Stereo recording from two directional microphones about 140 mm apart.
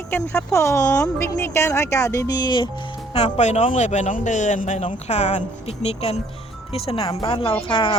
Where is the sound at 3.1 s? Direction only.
50° left (ahead or behind).